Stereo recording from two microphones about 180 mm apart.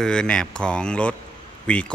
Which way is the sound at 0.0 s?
5° left (ahead or behind).